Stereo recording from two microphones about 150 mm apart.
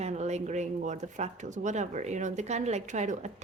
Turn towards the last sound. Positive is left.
turn(degrees=-50)  # may be behind; listen again after turning